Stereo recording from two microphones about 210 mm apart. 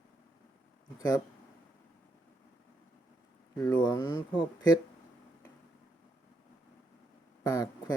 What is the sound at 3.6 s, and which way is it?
Speech, 15° left (ahead or behind).